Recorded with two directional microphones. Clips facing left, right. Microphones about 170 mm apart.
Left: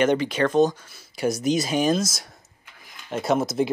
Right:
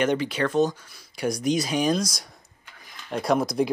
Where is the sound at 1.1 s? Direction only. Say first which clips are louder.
Left 2 dB; 5° left (ahead or behind).